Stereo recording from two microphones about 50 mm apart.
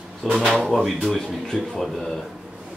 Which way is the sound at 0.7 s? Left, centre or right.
Centre.